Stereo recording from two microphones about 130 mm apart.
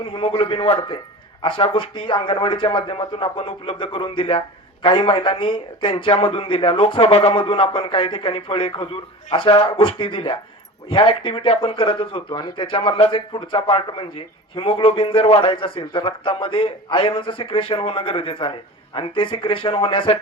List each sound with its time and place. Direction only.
0.0 s speech: 40° left (ahead or behind)